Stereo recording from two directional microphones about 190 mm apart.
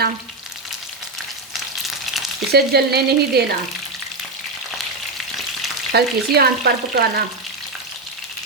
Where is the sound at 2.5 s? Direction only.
55° right (ahead or behind).